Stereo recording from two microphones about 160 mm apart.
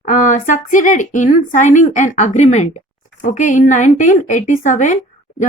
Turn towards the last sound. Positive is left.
turn(degrees=50)  # may be behind; listen again after turning